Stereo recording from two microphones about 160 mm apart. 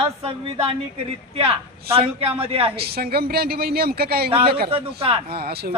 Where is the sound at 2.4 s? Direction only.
35° right (ahead or behind).